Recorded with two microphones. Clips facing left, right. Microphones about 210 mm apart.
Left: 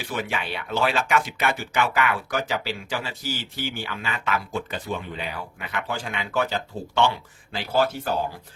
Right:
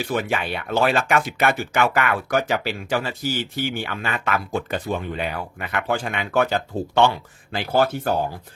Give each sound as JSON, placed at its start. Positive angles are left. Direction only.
{"t": 0.1, "sound": "speech", "side_deg": -50}